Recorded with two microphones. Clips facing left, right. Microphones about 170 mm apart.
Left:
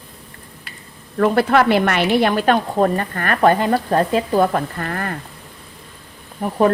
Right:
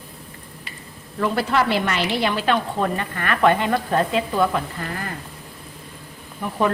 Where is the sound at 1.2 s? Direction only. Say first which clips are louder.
Left 6 dB; 55° left (ahead or behind).